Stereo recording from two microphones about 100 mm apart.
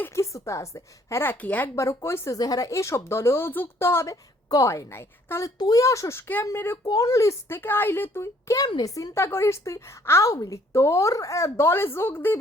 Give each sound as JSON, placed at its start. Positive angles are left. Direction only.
{"t": 0.0, "sound": "a woman's voice", "side_deg": 30}
{"t": 1.7, "sound": "a woman's voice", "side_deg": 30}
{"t": 4.1, "sound": "a woman's voice", "side_deg": 35}
{"t": 5.5, "sound": "a woman's voice", "side_deg": 40}
{"t": 6.8, "sound": "a woman's voice", "side_deg": 35}